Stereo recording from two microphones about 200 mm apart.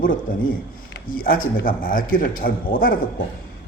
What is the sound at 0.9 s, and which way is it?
Speech, 45° left (ahead or behind).